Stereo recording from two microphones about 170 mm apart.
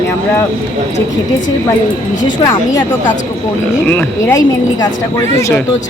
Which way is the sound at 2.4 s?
20° left (ahead or behind).